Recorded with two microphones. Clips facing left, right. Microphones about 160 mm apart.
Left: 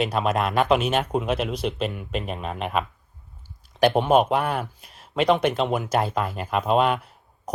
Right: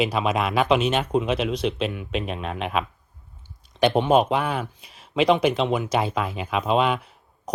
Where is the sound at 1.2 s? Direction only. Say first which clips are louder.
Right 1 dB; 50° left (ahead or behind).